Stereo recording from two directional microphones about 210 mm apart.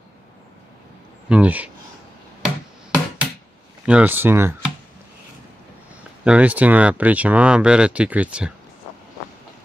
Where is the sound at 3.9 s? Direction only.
10° right (ahead or behind).